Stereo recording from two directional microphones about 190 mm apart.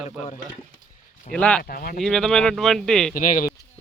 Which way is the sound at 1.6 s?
50° left (ahead or behind).